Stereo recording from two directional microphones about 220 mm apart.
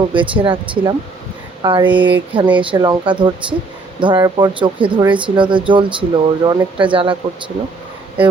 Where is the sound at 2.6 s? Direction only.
20° right (ahead or behind).